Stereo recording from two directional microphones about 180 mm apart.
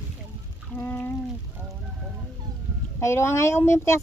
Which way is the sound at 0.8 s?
10° left (ahead or behind).